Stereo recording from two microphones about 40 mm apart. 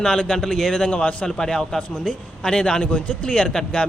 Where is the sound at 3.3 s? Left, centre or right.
Centre.